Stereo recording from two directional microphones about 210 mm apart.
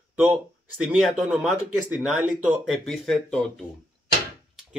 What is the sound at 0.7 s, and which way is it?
Speech, centre (ahead or behind).